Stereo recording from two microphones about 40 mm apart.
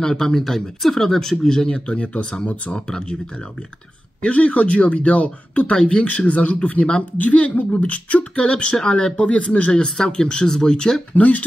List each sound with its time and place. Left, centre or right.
0.0 s speech: centre
2.4 s speech: left
2.7 s speech: left
4.2 s speech: left; by 11.0 s centre
11.1 s speech: left